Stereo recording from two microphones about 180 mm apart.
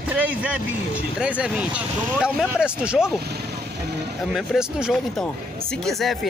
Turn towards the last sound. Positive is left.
turn(degrees=0)  # may be behind; listen again after turning